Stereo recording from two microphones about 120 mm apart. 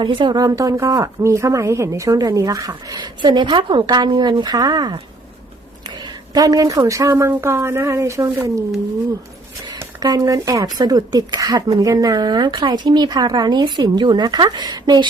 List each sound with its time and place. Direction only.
0.0 s speech: 40° right (ahead or behind)
6.3 s speech: 30° right (ahead or behind)
9.7 s speech: 30° right (ahead or behind)